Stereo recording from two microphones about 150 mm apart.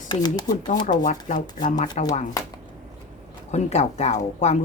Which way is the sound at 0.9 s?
60° left (ahead or behind).